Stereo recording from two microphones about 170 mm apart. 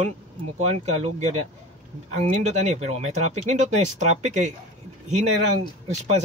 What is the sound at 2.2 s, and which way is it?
Speech, 40° right (ahead or behind).